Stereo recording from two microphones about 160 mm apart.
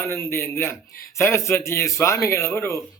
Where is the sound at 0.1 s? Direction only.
15° left (ahead or behind).